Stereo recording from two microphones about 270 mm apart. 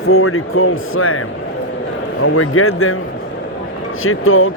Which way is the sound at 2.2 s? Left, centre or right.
Left.